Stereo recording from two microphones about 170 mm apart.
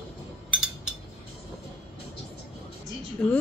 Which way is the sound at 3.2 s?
5° left (ahead or behind).